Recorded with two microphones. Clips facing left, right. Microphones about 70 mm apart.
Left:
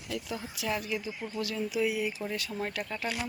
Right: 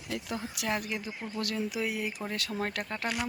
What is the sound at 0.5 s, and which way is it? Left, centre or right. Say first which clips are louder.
Speech: left 1 dB; right.